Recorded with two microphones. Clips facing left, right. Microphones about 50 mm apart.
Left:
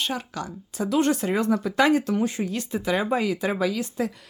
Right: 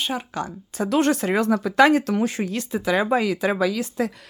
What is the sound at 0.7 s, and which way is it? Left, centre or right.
Speech, right.